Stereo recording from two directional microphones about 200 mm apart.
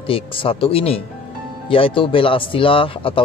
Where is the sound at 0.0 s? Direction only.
25° left (ahead or behind).